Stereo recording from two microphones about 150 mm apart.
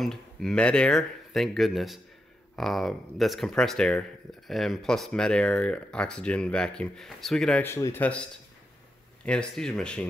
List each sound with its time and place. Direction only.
0.0 s speech: 5° left (ahead or behind)
7.6 s speech: 15° left (ahead or behind)
9.2 s speech: 5° left (ahead or behind)